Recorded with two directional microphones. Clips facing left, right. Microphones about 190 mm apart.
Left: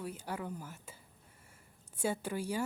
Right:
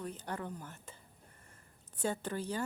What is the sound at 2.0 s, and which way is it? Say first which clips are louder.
Speech: left 1 dB; 10° left (ahead or behind).